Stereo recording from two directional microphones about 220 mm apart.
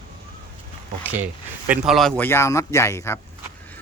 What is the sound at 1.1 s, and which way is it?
Speech, 5° right (ahead or behind).